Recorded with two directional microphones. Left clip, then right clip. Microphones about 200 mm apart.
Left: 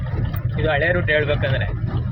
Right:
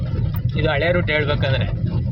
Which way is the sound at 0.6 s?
15° right (ahead or behind).